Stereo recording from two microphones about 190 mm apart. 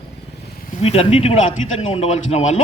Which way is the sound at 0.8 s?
30° left (ahead or behind).